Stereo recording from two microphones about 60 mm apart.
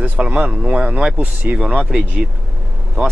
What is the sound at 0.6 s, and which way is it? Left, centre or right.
Speech, centre.